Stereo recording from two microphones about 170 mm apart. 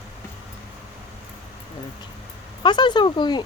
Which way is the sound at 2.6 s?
25° left (ahead or behind).